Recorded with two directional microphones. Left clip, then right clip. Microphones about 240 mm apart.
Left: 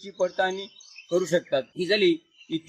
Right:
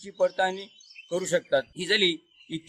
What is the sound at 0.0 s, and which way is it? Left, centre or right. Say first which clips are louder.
A man's voice: even; right.